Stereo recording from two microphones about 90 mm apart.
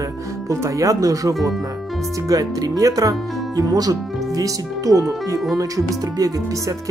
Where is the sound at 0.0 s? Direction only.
35° right (ahead or behind).